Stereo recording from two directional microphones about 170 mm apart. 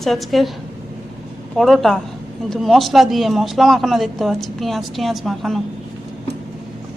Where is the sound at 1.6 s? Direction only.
Centre (ahead or behind).